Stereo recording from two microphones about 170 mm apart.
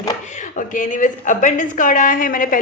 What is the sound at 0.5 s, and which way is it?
A woman's voice, 50° left (ahead or behind).